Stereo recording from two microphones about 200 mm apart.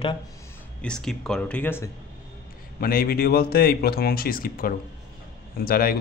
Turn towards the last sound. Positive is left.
turn(degrees=45)  # may be behind; listen again after turning